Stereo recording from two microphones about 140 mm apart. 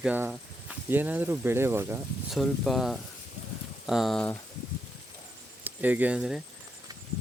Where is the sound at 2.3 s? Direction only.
Centre (ahead or behind).